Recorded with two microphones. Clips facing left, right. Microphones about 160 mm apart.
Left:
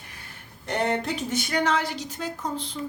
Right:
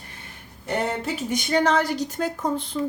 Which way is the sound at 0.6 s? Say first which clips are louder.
Even; 5° right (ahead or behind).